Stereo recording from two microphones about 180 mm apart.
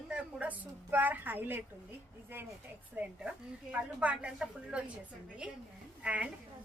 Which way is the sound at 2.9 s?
5° right (ahead or behind).